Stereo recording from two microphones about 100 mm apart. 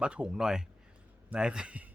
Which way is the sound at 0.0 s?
10° right (ahead or behind).